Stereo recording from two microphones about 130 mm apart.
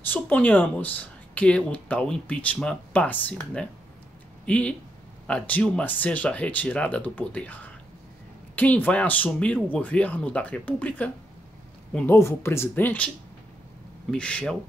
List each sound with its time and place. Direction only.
0.0 s speech: 15° left (ahead or behind)
12.2 s speech: 20° left (ahead or behind)
14.1 s speech: 10° left (ahead or behind)